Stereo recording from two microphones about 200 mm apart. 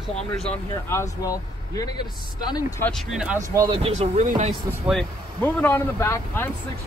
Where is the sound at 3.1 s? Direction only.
5° right (ahead or behind).